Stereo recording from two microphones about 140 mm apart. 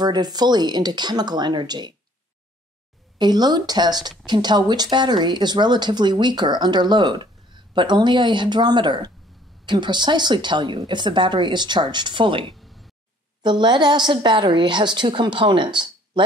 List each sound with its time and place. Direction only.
0.0 s speech: 30° right (ahead or behind)
3.2 s speech: 30° right (ahead or behind)
12.5 s a sound: centre (ahead or behind)
13.4 s speech: 35° right (ahead or behind)